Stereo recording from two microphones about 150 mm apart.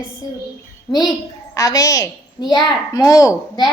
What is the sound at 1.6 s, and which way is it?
A woman's voice, 25° left (ahead or behind).